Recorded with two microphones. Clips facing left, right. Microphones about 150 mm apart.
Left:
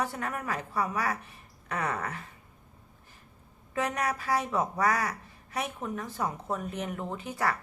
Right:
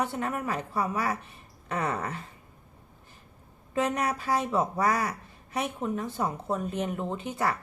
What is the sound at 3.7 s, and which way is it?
A woman's voice, 25° right (ahead or behind).